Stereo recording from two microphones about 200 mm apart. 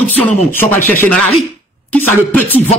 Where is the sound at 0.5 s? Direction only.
10° left (ahead or behind).